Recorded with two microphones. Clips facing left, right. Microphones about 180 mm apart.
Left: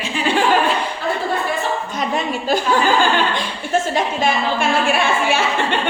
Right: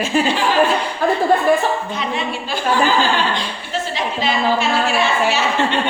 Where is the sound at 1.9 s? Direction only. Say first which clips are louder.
Left 1 dB; 45° left (ahead or behind).